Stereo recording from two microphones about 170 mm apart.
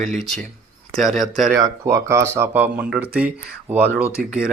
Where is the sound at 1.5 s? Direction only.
20° right (ahead or behind).